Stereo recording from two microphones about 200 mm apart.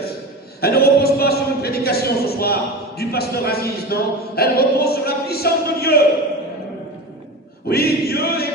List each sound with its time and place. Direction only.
0.6 s a man's voice: 50° left (ahead or behind)
7.7 s choir: 50° left (ahead or behind)